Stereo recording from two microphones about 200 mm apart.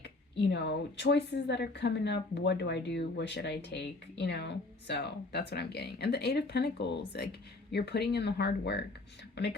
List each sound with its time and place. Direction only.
0.0 s speech: 55° left (ahead or behind)